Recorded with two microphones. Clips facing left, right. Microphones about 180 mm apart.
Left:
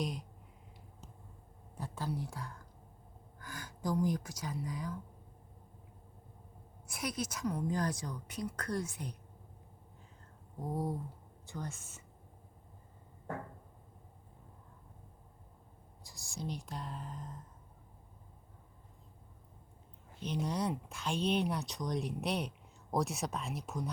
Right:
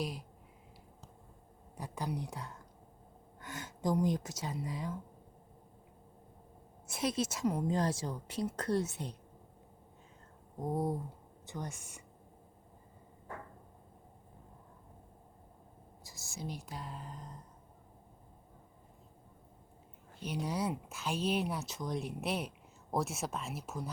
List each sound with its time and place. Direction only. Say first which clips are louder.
0.0 s speech: left 1 dB; 5° right (ahead or behind)
1.7 s speech: right 1 dB; 15° right (ahead or behind)
6.8 s a woman's voice: right 5 dB; 25° right (ahead or behind)
10.6 s a woman's voice: right 3 dB; 20° right (ahead or behind)
16.0 s speech: left 1 dB; centre (ahead or behind)
20.2 s speech: even; 5° right (ahead or behind)